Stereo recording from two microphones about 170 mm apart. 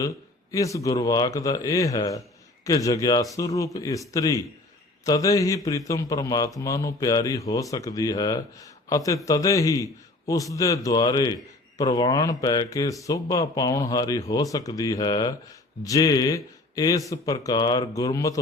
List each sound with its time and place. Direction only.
0.5 s speech: 20° left (ahead or behind)